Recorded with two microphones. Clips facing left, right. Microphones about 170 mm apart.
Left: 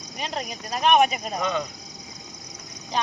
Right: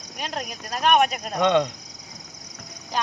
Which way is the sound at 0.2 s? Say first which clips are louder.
Even; centre (ahead or behind).